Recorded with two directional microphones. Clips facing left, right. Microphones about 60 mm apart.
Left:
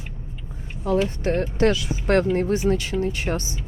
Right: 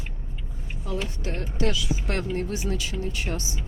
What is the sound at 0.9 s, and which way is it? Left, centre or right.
Speech, left.